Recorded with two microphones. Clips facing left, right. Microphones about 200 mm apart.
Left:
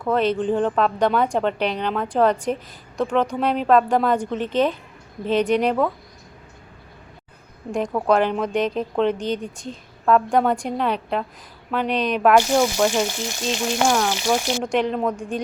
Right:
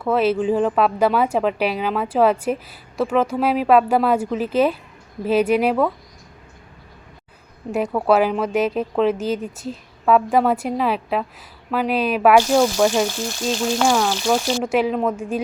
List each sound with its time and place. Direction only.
0.0 s speech: 5° right (ahead or behind)
7.7 s speech: 5° right (ahead or behind)
13.2 s frying: 15° left (ahead or behind)
14.6 s speech: 5° right (ahead or behind)